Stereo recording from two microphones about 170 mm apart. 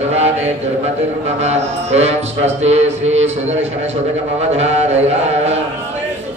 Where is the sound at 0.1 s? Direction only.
40° right (ahead or behind).